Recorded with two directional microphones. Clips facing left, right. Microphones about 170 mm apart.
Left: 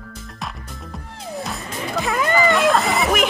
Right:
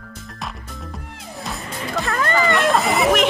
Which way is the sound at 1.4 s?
Centre (ahead or behind).